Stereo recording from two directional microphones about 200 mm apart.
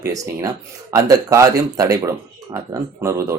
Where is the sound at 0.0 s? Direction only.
15° right (ahead or behind).